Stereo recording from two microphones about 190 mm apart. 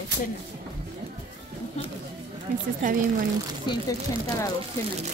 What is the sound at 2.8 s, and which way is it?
Speech, 45° right (ahead or behind).